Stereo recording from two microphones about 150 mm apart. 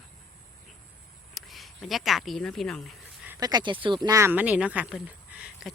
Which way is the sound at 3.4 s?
30° right (ahead or behind).